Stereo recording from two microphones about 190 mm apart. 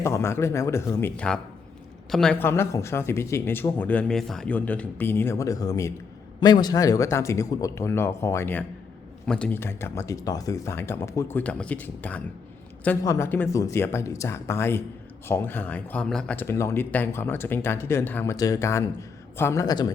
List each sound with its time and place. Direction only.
0.0 s speech: 15° left (ahead or behind)